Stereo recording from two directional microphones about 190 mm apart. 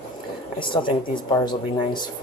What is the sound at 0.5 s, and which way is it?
Speech, 25° left (ahead or behind).